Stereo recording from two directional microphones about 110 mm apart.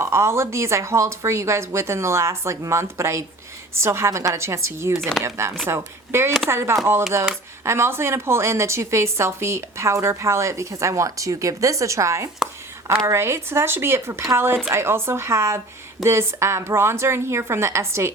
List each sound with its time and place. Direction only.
0.0 s a woman's voice: 25° right (ahead or behind)
4.9 s speech: centre (ahead or behind)
5.2 s a woman's voice: 25° right (ahead or behind)